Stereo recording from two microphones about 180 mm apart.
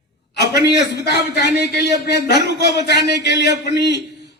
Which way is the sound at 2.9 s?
70° left (ahead or behind).